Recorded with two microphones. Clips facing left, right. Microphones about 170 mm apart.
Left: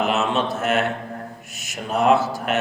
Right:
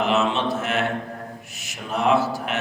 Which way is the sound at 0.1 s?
45° left (ahead or behind).